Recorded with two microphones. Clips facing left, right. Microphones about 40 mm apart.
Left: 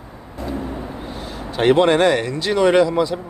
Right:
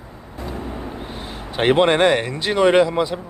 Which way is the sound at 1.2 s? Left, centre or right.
Right.